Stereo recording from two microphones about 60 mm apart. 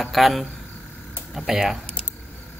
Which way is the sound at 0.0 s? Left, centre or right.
Centre.